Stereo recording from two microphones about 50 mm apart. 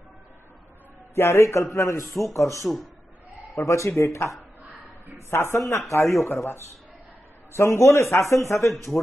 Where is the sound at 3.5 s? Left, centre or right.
Left.